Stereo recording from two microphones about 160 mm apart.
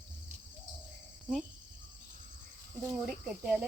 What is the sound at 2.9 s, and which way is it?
Speech, 5° right (ahead or behind).